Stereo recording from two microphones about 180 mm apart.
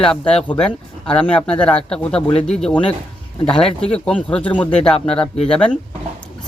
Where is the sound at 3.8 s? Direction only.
5° left (ahead or behind).